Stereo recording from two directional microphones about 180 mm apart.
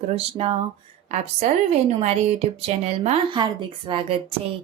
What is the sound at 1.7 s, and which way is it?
A woman's voice, 35° right (ahead or behind).